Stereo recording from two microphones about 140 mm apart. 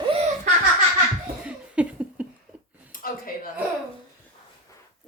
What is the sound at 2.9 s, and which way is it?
Speech, 90° left.